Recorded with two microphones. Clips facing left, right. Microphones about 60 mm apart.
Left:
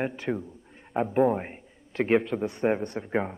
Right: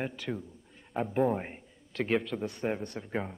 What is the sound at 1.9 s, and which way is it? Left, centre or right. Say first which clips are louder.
Speech: left 6 dB; left.